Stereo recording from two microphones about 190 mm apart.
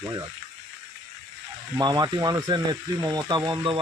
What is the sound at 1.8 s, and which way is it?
Speech, 20° right (ahead or behind).